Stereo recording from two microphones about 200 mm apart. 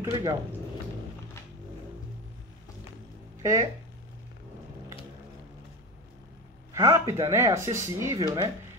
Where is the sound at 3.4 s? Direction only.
15° right (ahead or behind).